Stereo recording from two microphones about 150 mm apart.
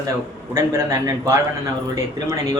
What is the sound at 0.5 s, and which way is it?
Speech, 20° right (ahead or behind).